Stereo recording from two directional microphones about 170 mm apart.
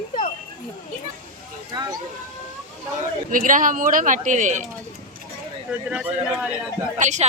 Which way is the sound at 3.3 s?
50° right (ahead or behind).